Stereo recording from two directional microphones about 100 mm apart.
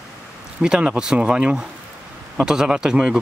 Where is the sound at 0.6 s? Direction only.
10° right (ahead or behind).